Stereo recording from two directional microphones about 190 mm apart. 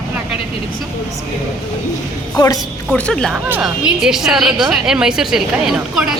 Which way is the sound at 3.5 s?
10° right (ahead or behind).